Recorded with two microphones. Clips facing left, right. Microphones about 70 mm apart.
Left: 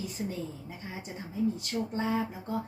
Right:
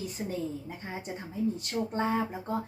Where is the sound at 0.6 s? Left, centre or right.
Right.